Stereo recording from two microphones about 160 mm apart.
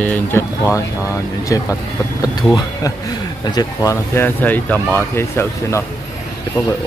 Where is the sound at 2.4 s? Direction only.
20° left (ahead or behind).